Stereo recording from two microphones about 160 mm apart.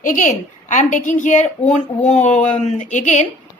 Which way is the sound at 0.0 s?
55° left (ahead or behind).